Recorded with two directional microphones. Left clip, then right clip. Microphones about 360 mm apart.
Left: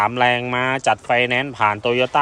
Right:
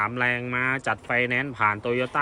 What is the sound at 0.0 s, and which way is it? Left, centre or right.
Speech, centre.